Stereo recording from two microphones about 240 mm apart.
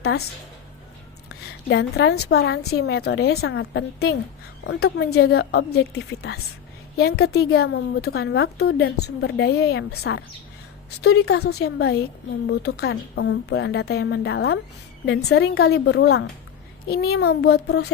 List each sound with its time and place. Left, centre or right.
1.7 s a woman's voice: left